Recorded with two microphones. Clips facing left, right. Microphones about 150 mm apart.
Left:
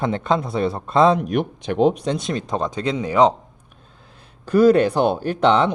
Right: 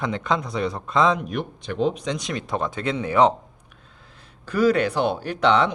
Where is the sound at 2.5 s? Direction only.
20° left (ahead or behind).